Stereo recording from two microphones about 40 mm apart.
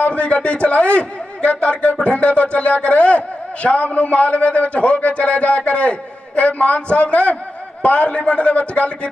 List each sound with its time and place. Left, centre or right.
0.0 s a man's voice: left